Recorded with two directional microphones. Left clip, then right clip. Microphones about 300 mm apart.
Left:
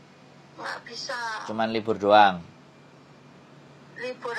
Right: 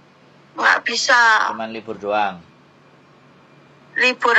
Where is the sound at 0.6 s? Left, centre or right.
Right.